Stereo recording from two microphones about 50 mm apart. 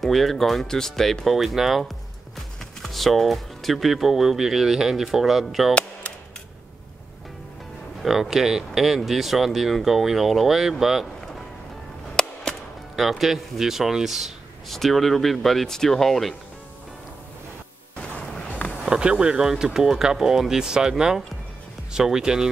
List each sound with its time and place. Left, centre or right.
0.0 s speech: centre
8.0 s speech: centre
12.2 s music: centre
12.9 s speech: centre
18.0 s a sound: left
18.9 s speech: centre
21.9 s speech: centre